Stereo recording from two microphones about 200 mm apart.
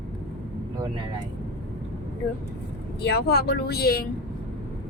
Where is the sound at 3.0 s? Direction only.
55° left (ahead or behind).